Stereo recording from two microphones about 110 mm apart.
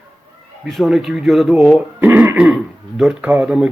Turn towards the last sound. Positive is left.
turn(degrees=-10)  # may be behind; listen again after turning